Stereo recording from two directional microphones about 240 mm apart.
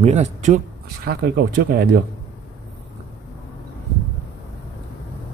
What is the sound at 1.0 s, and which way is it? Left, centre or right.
Speech, right.